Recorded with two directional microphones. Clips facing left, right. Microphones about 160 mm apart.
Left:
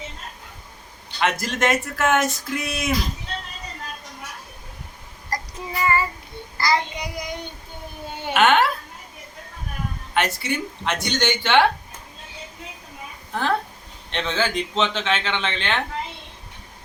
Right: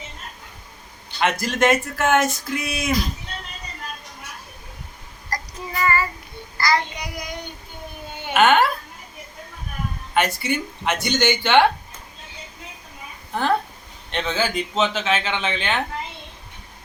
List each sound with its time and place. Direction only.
1.2 s speech: centre (ahead or behind)
5.3 s child singing: 20° left (ahead or behind)
8.3 s speech: centre (ahead or behind)
10.2 s speech: centre (ahead or behind)
13.3 s speech: centre (ahead or behind)